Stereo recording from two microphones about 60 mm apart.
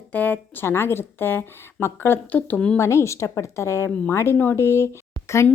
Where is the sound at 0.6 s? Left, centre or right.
Left.